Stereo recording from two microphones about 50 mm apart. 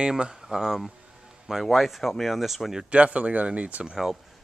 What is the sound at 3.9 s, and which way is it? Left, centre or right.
Speech, centre.